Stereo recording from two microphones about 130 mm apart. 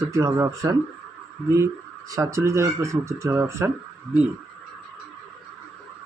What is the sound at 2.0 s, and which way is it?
Speech, 25° right (ahead or behind).